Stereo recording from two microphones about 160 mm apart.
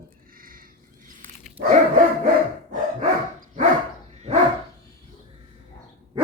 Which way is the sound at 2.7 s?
50° right (ahead or behind).